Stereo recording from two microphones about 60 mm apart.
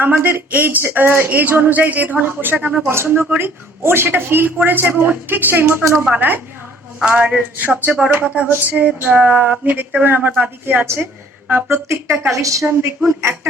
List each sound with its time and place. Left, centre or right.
0.0 s speech: right
5.8 s a woman's voice: right
6.1 s speech: right
7.0 s a sound: centre
7.3 s speech: right
8.2 s a sound: centre
9.0 s speech: right
10.8 s a woman's voice: right
12.3 s a woman's voice: right